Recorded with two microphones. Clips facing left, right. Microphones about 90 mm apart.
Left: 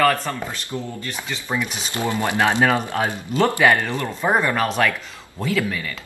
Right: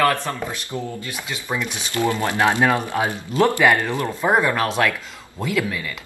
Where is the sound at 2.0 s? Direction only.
20° left (ahead or behind).